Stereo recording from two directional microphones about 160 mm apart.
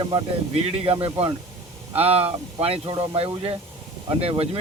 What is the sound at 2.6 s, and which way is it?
Speech, 40° right (ahead or behind).